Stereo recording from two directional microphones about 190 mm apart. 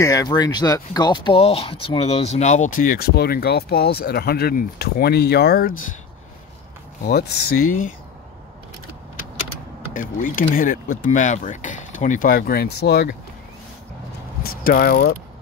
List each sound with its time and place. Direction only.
0.0 s speech: 20° left (ahead or behind); by 5.9 s 50° left (ahead or behind)
7.1 s speech: 55° left (ahead or behind)
9.9 s speech: 45° left (ahead or behind); by 13.1 s 60° left (ahead or behind)
14.4 s speech: 50° left (ahead or behind)